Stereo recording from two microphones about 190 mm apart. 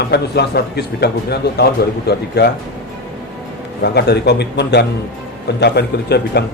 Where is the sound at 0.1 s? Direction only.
60° left (ahead or behind).